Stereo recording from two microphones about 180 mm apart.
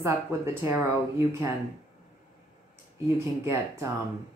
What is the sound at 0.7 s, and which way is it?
Speech, 15° right (ahead or behind).